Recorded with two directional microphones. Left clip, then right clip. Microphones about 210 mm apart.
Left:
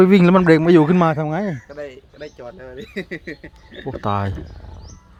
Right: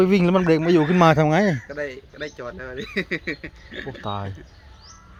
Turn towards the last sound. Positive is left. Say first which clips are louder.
# left 7 dB
turn(degrees=35)  # may be behind; listen again after turning